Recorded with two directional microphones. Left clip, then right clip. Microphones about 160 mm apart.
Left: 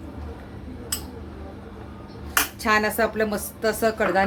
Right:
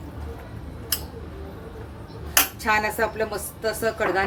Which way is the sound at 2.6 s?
40° left (ahead or behind).